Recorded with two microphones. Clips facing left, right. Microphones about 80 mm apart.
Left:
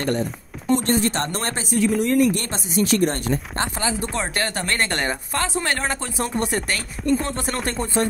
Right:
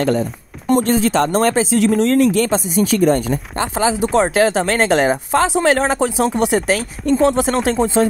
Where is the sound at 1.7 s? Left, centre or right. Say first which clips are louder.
Right 5 dB; right.